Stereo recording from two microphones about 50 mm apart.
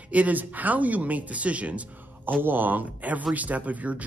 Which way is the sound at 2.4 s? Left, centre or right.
Right.